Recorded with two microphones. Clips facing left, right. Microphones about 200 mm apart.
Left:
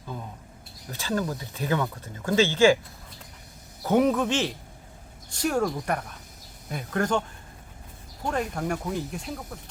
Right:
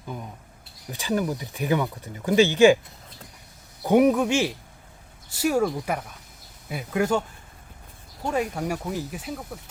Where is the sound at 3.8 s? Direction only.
15° right (ahead or behind).